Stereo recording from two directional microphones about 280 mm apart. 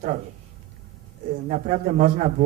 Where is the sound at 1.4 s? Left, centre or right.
Right.